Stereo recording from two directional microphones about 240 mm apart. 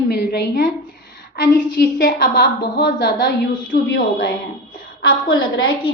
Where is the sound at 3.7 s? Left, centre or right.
Left.